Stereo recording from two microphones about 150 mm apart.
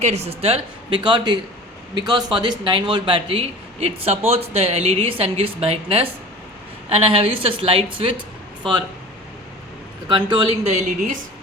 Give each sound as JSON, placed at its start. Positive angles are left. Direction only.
{"t": 0.0, "sound": "speech", "side_deg": -45}
{"t": 10.1, "sound": "speech", "side_deg": -35}